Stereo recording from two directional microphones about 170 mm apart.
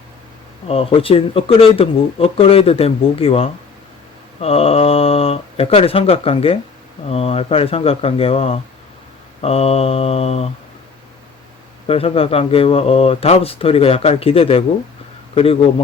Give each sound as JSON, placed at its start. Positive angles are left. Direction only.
{"t": 0.7, "sound": "speech", "side_deg": 35}
{"t": 11.9, "sound": "speech", "side_deg": 35}